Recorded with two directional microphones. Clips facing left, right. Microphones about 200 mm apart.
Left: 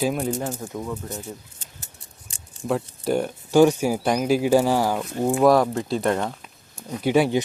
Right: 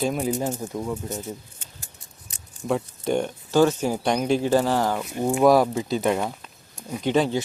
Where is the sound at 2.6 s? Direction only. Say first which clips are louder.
Left 1 dB; centre (ahead or behind).